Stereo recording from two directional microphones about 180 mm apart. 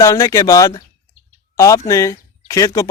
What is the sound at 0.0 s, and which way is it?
Speech, 20° left (ahead or behind).